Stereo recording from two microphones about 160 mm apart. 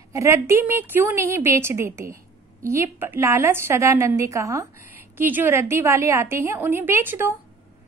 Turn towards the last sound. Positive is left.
turn(degrees=-15)  # may be behind; listen again after turning